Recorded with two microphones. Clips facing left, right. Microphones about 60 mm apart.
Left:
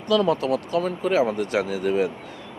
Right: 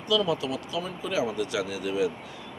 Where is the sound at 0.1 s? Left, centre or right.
Left.